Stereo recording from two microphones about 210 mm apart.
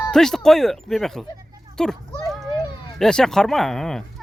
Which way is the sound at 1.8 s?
5° left (ahead or behind).